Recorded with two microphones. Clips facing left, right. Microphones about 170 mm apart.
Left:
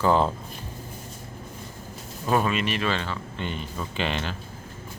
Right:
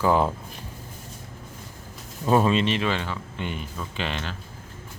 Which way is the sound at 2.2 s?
25° right (ahead or behind).